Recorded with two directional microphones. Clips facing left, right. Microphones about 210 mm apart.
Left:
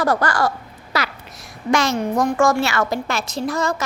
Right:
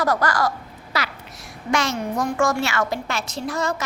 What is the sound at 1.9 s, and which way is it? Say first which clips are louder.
Speech: left 5 dB; 90° left.